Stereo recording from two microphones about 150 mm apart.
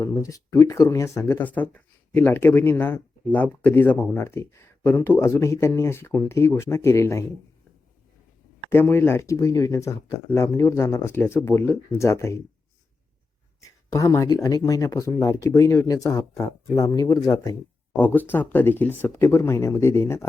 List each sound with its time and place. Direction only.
0.0 s speech: 20° left (ahead or behind)
8.7 s speech: 15° left (ahead or behind)
13.6 s speech: 20° left (ahead or behind)
17.9 s speech: 10° left (ahead or behind)